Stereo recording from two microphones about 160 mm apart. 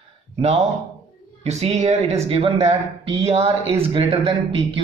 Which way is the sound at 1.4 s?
45° right (ahead or behind).